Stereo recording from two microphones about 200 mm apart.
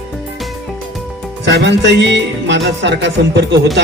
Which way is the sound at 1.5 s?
60° right (ahead or behind).